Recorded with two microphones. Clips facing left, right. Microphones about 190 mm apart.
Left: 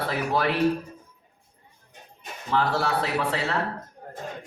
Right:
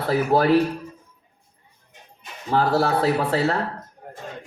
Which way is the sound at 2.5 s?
40° right (ahead or behind).